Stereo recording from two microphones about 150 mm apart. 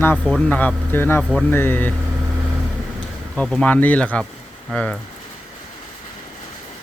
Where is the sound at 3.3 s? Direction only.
5° left (ahead or behind).